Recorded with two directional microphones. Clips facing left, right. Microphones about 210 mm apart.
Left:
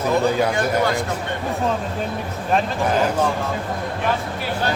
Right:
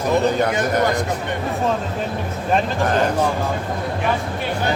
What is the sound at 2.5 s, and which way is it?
Speech, 5° left (ahead or behind).